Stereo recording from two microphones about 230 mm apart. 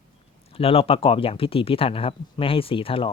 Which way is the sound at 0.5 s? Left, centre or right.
Left.